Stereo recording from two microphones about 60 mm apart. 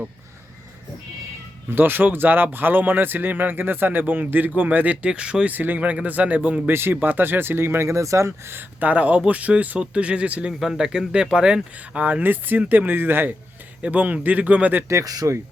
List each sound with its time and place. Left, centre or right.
1.7 s speech: right
5.0 s speech: centre
5.5 s speech: right
6.7 s speech: right
8.5 s speech: right
10.6 s speech: centre
12.0 s speech: right
13.8 s speech: right
14.8 s speech: right